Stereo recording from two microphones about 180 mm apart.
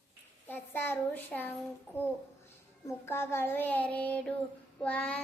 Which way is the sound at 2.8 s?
15° left (ahead or behind).